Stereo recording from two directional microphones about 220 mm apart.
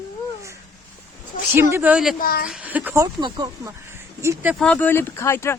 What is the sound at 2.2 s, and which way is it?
Speech, 40° left (ahead or behind).